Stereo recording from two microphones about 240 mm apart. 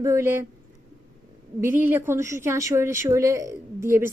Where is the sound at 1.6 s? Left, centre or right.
Centre.